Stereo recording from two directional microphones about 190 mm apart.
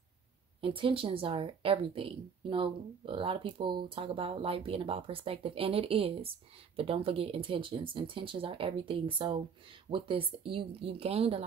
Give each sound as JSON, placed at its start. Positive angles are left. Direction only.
{"t": 0.6, "sound": "speech", "side_deg": -30}